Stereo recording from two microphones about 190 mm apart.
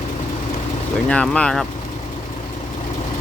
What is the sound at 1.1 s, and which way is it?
Speech, 5° left (ahead or behind).